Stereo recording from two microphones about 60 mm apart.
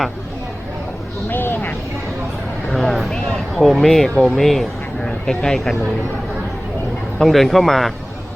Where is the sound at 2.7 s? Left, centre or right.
Centre.